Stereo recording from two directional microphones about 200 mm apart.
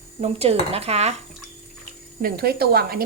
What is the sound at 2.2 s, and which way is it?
Speech, 50° right (ahead or behind).